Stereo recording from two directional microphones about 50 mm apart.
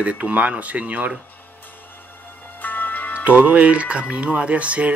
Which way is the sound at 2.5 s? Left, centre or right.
Left.